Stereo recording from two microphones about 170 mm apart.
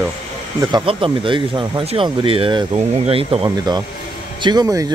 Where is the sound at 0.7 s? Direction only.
30° right (ahead or behind).